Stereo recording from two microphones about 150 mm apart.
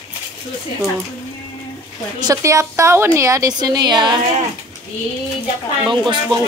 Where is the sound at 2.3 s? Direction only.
20° right (ahead or behind).